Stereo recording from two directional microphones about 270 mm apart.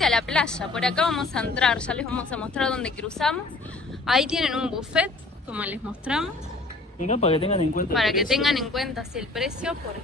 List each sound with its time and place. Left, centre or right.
0.0 s a woman's voice: centre
7.0 s speech: left
7.9 s a woman's voice: centre